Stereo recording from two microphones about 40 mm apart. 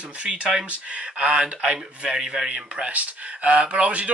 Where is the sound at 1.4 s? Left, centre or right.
Centre.